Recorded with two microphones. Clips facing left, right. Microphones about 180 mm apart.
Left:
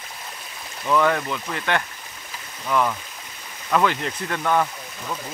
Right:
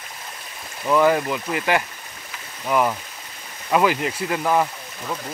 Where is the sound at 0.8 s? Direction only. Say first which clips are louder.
Right 3 dB; 10° right (ahead or behind).